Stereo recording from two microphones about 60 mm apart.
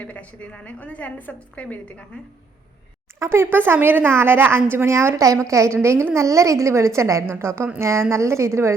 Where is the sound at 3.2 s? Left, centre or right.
Right.